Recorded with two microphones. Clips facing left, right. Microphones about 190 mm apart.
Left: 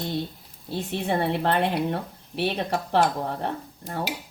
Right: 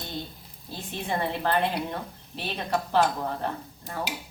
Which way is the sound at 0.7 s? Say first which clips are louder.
Left 5 dB; 70° left (ahead or behind).